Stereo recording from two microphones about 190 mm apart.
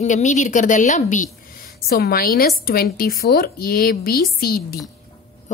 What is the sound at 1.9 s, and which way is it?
Speech, 50° left (ahead or behind).